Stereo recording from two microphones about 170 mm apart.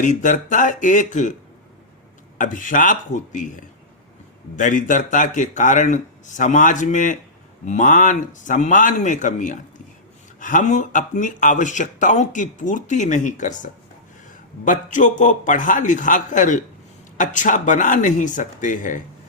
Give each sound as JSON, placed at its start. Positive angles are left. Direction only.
{"t": 0.0, "sound": "speech", "side_deg": 50}
{"t": 2.4, "sound": "speech", "side_deg": 50}